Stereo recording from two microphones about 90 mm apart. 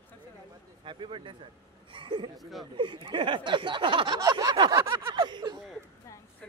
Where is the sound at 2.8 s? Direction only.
65° right (ahead or behind).